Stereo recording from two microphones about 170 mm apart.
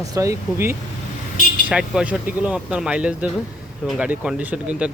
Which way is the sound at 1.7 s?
5° right (ahead or behind).